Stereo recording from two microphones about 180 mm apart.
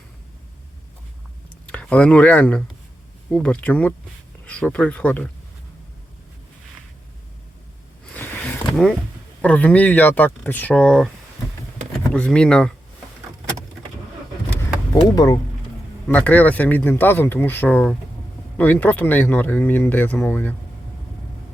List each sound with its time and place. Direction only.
1.6 s speech: 5° left (ahead or behind)
8.0 s a sound: 10° left (ahead or behind)
9.4 s speech: 10° left (ahead or behind)
12.1 s speech: 5° left (ahead or behind)
14.9 s speech: 20° left (ahead or behind)
16.1 s speech: 10° left (ahead or behind)